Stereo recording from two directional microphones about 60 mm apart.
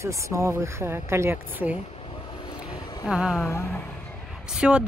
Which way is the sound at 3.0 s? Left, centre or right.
Centre.